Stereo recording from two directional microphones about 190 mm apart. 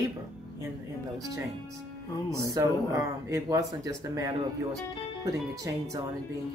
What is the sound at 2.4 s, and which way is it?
Speech, 15° right (ahead or behind).